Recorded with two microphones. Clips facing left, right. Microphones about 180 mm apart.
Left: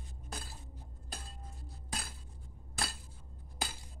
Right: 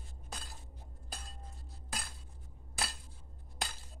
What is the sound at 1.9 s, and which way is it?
Cutlery, centre (ahead or behind).